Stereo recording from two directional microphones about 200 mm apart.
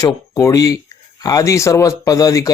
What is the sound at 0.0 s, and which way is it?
Speech, 15° left (ahead or behind).